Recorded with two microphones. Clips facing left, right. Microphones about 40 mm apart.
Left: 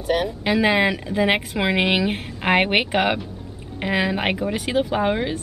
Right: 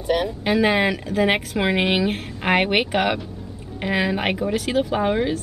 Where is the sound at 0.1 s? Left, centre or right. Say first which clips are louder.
Even; centre.